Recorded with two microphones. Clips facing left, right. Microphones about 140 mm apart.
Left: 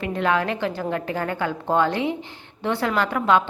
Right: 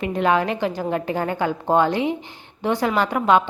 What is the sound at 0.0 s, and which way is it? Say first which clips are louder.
A woman's voice: right 3 dB; 20° right (ahead or behind).